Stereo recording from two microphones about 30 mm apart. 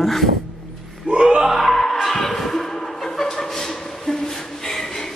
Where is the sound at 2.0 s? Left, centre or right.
Centre.